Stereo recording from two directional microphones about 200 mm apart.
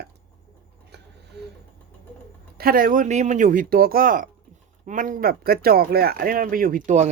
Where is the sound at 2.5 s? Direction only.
45° right (ahead or behind).